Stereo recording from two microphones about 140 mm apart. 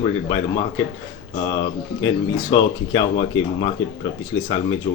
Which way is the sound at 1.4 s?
35° left (ahead or behind).